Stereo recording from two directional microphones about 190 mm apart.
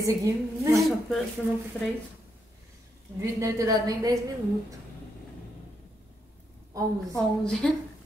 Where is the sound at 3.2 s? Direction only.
15° right (ahead or behind).